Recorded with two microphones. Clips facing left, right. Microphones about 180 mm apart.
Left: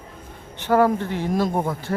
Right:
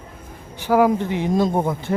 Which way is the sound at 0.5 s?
10° right (ahead or behind).